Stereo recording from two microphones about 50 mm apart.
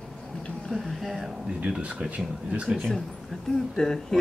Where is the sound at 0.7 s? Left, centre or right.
Centre.